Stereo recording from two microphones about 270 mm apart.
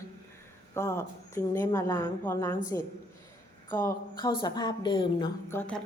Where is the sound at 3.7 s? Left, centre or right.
Centre.